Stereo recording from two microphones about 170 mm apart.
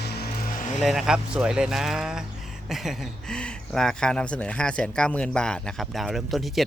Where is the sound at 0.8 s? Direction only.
Centre (ahead or behind).